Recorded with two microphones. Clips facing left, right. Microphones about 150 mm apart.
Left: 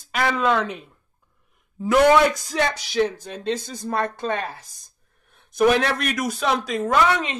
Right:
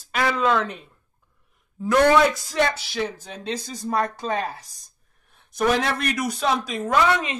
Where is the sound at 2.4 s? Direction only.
Centre (ahead or behind).